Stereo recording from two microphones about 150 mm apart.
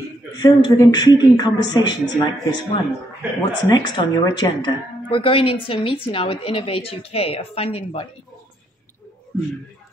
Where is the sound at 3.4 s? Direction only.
30° left (ahead or behind).